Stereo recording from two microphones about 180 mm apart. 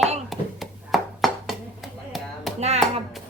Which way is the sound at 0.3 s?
Centre (ahead or behind).